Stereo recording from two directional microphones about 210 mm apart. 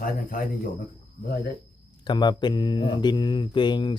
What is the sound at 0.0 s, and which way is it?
Speech, 45° left (ahead or behind).